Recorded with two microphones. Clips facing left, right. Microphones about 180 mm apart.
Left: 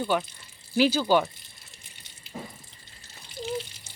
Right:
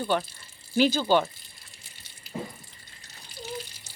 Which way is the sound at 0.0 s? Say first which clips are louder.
Even; centre (ahead or behind).